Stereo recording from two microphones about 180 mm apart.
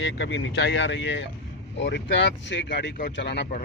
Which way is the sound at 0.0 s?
90° left.